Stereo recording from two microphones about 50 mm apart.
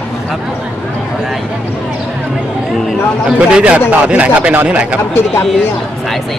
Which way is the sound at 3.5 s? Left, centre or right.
Right.